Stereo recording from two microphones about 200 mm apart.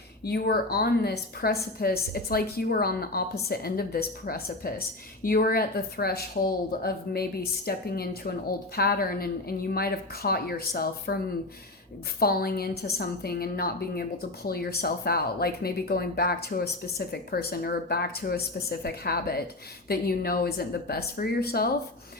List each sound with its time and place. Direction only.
0.3 s speech: 50° left (ahead or behind)
12.2 s speech: 50° left (ahead or behind)